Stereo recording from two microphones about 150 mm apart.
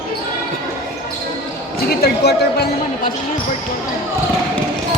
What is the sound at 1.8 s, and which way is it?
Speech, 90° left.